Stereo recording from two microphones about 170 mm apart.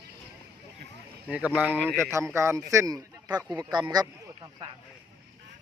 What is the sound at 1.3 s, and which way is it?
Speech, 10° right (ahead or behind).